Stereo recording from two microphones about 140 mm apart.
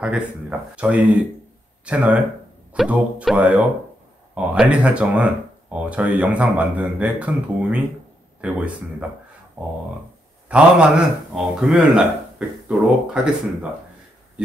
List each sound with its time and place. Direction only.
0.0 s a man's voice: 10° right (ahead or behind)